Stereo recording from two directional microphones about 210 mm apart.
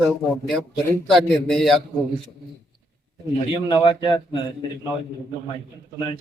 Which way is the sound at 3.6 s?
20° left (ahead or behind).